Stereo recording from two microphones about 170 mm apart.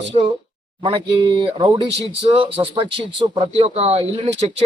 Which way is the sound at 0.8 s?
30° right (ahead or behind).